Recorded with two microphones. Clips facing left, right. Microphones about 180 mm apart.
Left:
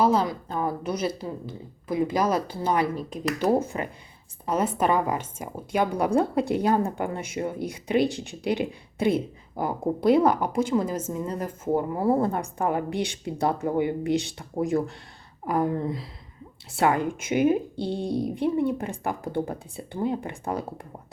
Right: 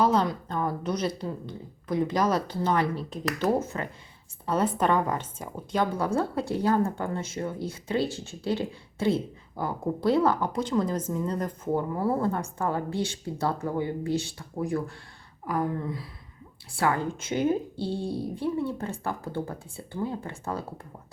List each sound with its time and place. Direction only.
0.0 s a woman's voice: 5° left (ahead or behind)